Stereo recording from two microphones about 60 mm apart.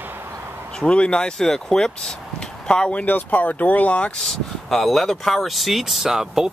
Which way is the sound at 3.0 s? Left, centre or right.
Left.